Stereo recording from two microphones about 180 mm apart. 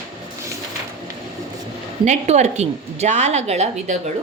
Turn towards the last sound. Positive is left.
turn(degrees=-40)  # may be behind; listen again after turning